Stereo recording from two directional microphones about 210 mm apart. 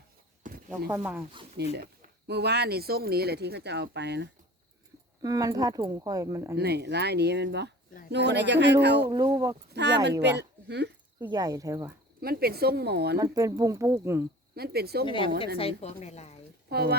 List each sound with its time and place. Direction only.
0.4 s a sound: 35° right (ahead or behind)
0.9 s speech: 10° right (ahead or behind)
1.5 s speech: 50° right (ahead or behind)
5.2 s speech: 15° right (ahead or behind)
6.6 s speech: 50° right (ahead or behind)
9.0 s speech: 15° right (ahead or behind)
9.7 s speech: 55° right (ahead or behind)
11.3 s speech: 15° right (ahead or behind)
12.2 s speech: 45° right (ahead or behind)
13.1 s speech: 15° right (ahead or behind)
14.5 s speech: 50° right (ahead or behind)
15.0 s a woman's voice: 25° left (ahead or behind)
16.6 s speech: 50° right (ahead or behind)